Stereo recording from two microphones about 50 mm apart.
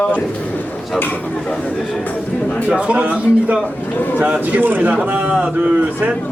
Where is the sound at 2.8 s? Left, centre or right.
Right.